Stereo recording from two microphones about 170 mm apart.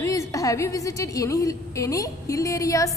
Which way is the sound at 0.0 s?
20° left (ahead or behind).